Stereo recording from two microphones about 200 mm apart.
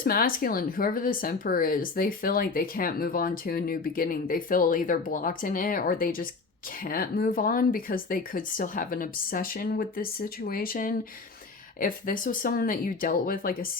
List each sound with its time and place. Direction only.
0.0 s speech: 45° left (ahead or behind)